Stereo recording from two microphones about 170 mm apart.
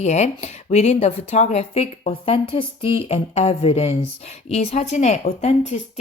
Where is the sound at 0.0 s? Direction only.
40° left (ahead or behind).